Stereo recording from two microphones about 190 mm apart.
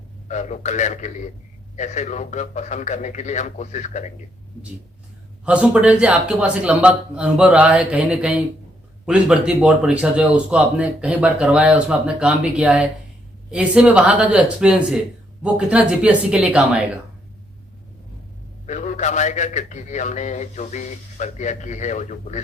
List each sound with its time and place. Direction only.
0.3 s a man's voice: 40° left (ahead or behind)
5.5 s speech: 5° right (ahead or behind)
18.6 s a man's voice: 40° left (ahead or behind)